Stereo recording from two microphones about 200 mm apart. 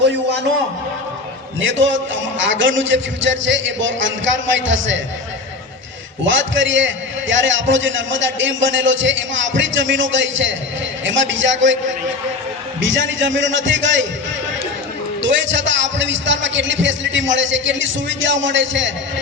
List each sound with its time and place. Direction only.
1.5 s a man's voice: 70° right (ahead or behind)
6.2 s a man's voice: 70° right (ahead or behind)
12.8 s a man's voice: 70° right (ahead or behind)
15.2 s a man's voice: 65° right (ahead or behind)